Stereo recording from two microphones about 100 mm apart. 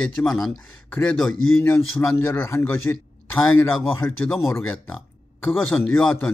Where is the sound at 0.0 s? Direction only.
5° left (ahead or behind).